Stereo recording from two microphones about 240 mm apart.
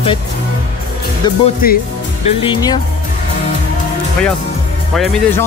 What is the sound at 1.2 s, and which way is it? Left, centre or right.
Speech, centre.